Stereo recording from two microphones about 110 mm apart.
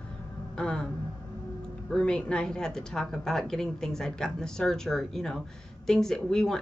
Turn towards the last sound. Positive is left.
turn(degrees=5)  # may be behind; listen again after turning